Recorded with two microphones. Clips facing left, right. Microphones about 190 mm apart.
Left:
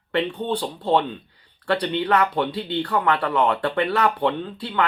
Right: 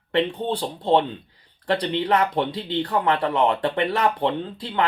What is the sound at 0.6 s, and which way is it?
Speech, 25° right (ahead or behind).